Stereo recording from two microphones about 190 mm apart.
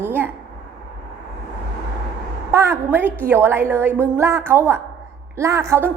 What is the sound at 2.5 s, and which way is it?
A woman's voice, 15° right (ahead or behind).